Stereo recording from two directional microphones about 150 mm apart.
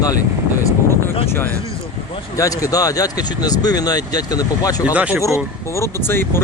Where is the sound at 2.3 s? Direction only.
20° left (ahead or behind).